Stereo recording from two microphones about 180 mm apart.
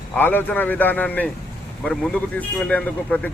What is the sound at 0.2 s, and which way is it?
A man's voice, 10° left (ahead or behind).